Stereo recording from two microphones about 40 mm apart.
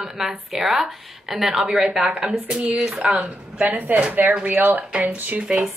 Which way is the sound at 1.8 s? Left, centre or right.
Right.